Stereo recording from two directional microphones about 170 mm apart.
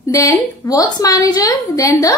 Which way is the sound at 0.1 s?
20° left (ahead or behind).